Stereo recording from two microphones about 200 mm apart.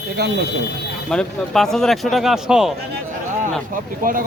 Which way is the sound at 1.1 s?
Centre (ahead or behind).